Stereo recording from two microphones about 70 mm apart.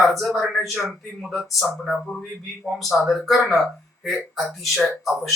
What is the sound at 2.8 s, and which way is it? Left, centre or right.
Speech, centre.